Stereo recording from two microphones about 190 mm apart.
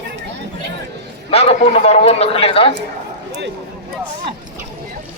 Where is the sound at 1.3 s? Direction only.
30° left (ahead or behind).